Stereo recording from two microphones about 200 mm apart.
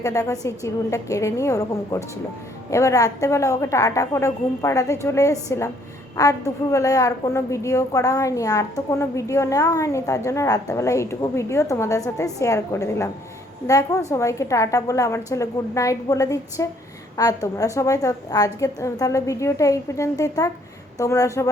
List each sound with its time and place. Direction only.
0.0 s a woman's voice: 15° left (ahead or behind)